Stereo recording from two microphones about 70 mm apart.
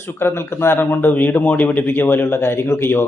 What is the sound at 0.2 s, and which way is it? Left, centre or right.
Speech, left.